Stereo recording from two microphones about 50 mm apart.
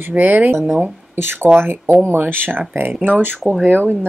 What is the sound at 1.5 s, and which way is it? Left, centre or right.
Speech, right.